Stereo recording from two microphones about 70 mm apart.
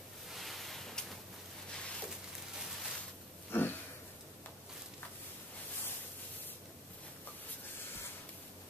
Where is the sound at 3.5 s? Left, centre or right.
Left.